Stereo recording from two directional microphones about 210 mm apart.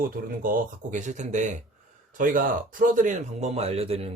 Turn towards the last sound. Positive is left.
turn(degrees=-30)  # may be behind; listen again after turning